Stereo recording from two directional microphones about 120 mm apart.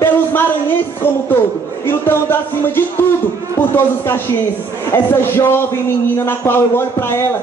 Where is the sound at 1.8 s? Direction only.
20° left (ahead or behind).